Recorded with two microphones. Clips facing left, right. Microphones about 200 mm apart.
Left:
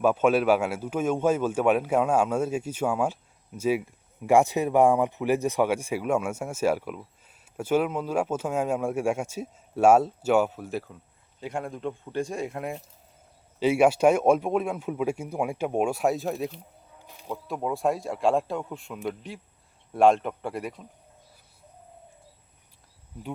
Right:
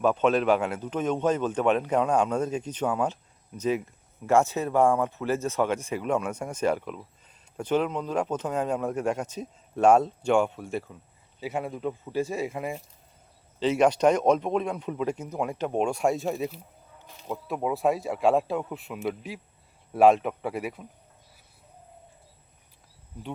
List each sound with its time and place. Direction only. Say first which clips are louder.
0.0 s speech: left 1 dB; 10° left (ahead or behind)
13.6 s speech: left 2 dB; 10° left (ahead or behind)